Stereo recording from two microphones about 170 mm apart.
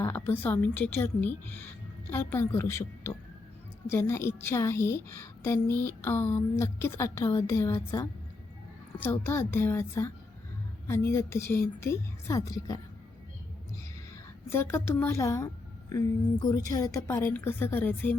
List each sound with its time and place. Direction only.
0.0 s a woman's voice: 15° left (ahead or behind)
14.5 s a woman's voice: 15° left (ahead or behind)